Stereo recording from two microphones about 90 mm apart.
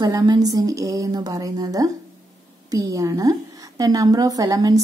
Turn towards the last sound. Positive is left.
turn(degrees=-40)  # may be behind; listen again after turning